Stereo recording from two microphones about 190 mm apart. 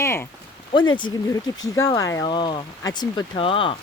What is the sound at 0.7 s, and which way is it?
Speech, 25° left (ahead or behind).